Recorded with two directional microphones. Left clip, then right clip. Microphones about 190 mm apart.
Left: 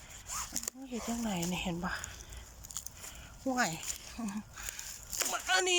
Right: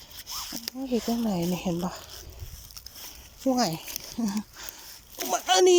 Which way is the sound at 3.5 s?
30° right (ahead or behind).